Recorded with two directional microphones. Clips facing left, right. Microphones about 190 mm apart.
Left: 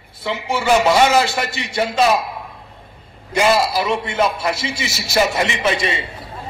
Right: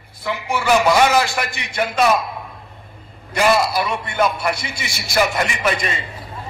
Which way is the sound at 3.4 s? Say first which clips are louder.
Left 1 dB; 25° left (ahead or behind).